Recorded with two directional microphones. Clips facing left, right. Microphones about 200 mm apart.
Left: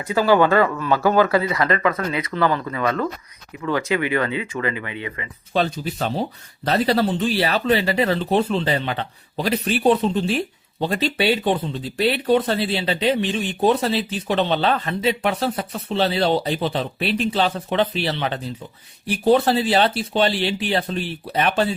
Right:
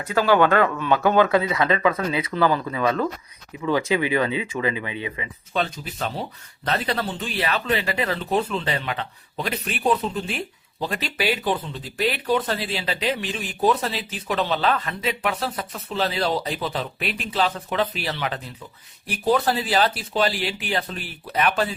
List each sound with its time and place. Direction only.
0.0 s speech: 10° left (ahead or behind); by 5.3 s 15° right (ahead or behind)
5.5 s speech: 30° left (ahead or behind)